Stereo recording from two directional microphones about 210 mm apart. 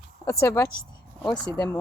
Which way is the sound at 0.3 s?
15° left (ahead or behind).